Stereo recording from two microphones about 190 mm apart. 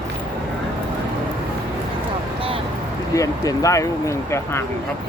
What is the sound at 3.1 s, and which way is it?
Speech, 15° left (ahead or behind).